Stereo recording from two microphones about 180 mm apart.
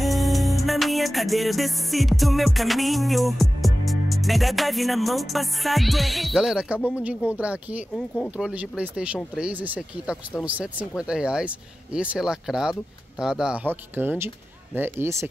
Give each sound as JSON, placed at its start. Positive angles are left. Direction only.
{"t": 0.0, "sound": "music", "side_deg": 0}
{"t": 8.4, "sound": "speech", "side_deg": -5}